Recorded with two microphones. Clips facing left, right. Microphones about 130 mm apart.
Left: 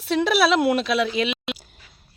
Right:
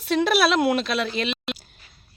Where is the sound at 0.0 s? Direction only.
Centre (ahead or behind).